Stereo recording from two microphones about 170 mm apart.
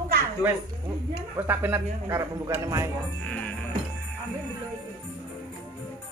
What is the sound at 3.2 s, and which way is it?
Music, 5° left (ahead or behind).